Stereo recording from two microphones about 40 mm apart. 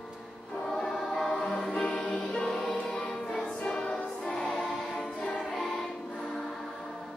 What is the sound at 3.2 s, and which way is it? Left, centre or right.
Choir, centre.